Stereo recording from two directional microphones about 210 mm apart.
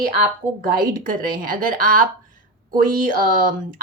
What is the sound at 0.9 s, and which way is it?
A woman's voice, 40° right (ahead or behind).